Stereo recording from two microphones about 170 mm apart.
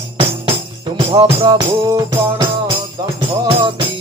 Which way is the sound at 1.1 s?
30° right (ahead or behind).